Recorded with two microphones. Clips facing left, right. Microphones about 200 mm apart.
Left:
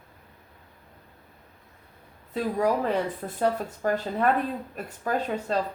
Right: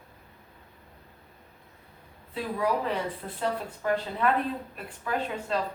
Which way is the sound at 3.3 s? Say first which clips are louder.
Left 5 dB; 45° left (ahead or behind).